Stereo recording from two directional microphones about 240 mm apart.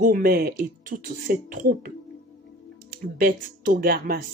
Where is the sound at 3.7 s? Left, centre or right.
Right.